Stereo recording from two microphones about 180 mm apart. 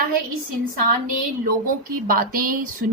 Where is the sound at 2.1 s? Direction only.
55° right (ahead or behind).